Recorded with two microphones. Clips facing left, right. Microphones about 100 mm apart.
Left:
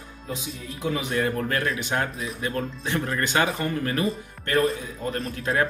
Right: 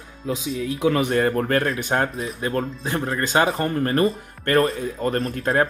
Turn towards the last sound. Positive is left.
turn(degrees=-40)  # may be behind; listen again after turning